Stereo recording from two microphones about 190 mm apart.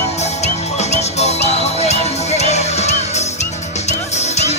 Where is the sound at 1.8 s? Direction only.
35° left (ahead or behind).